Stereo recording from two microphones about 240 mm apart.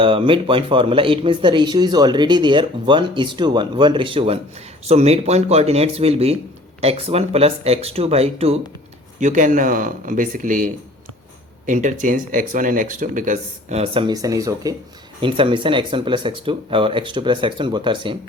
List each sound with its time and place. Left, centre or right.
0.0 s speech: right